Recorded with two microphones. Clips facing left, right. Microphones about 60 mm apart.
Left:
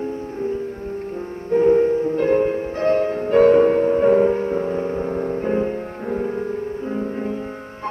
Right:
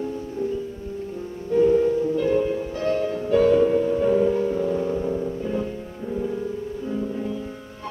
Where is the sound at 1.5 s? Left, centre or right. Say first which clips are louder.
Left 3 dB; left.